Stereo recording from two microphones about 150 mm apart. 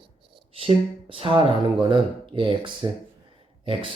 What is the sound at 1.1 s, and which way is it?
Speech, 35° right (ahead or behind).